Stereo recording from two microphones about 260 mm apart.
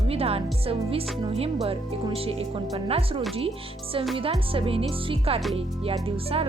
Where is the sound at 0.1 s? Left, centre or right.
Right.